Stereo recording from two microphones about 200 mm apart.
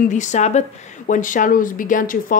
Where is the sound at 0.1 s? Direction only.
35° left (ahead or behind).